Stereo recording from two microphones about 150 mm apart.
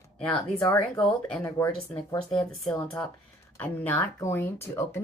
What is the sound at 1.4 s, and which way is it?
Speech, 15° left (ahead or behind).